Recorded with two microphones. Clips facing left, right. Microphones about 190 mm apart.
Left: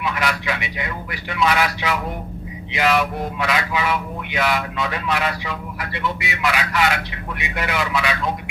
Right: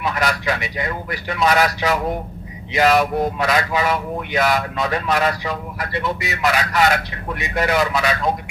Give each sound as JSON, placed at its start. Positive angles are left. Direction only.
{"t": 0.0, "sound": "speech", "side_deg": -40}